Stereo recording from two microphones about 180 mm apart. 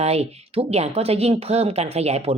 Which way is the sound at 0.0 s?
35° right (ahead or behind).